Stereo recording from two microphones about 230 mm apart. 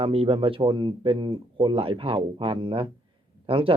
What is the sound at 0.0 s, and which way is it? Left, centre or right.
Speech, right.